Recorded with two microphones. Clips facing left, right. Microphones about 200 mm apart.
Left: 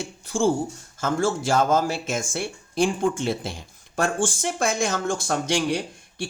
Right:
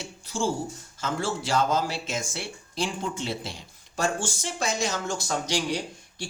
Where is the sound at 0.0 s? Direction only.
50° left (ahead or behind).